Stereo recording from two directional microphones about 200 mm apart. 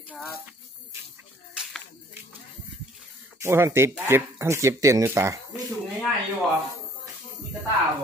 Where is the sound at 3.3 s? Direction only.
15° right (ahead or behind).